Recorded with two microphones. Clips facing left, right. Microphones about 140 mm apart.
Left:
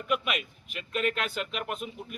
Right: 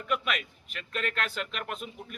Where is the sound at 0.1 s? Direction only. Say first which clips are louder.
Left 1 dB; 10° left (ahead or behind).